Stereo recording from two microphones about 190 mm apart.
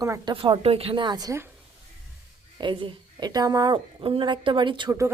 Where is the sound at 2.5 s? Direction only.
25° right (ahead or behind).